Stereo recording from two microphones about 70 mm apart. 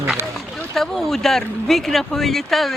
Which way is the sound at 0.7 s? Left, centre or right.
Centre.